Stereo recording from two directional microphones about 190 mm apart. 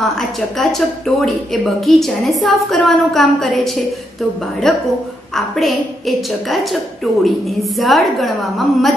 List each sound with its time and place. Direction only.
0.0 s speech: centre (ahead or behind)